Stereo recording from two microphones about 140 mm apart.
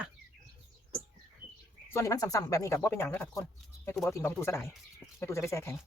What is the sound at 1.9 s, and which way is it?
Speech, 20° left (ahead or behind).